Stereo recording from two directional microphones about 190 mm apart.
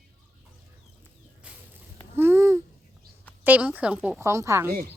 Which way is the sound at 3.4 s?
10° right (ahead or behind).